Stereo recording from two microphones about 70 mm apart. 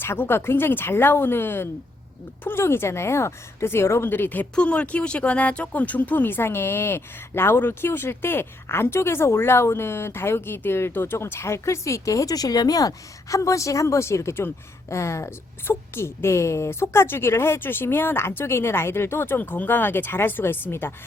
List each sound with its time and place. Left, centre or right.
0.0 s speech: left
4.5 s speech: centre